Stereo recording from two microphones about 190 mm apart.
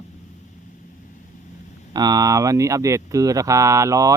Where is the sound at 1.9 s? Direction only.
20° right (ahead or behind).